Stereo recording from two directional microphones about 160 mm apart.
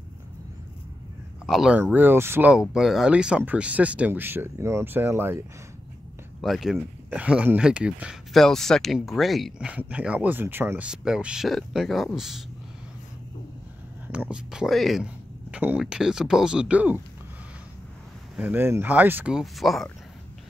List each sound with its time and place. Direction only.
1.4 s speech: 5° right (ahead or behind)
2.7 s speech: centre (ahead or behind)
6.4 s speech: centre (ahead or behind)
14.0 s speech: 10° right (ahead or behind)
18.3 s speech: 5° right (ahead or behind)